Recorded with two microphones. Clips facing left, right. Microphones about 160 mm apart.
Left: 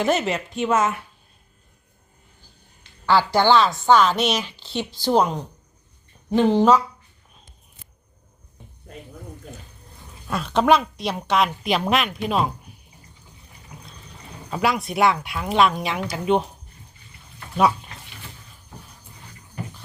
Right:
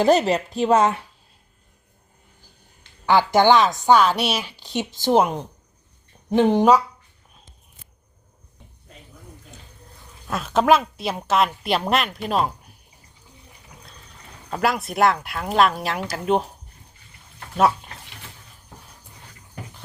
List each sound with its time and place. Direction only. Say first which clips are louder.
0.0 s a woman's voice: right 5 dB; 35° right (ahead or behind)
3.1 s a woman's voice: right 2 dB; 15° right (ahead or behind)
10.2 s speech: even; centre (ahead or behind)
14.5 s speech: even; centre (ahead or behind)